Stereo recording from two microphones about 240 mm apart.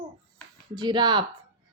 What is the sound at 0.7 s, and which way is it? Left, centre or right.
Speech, centre.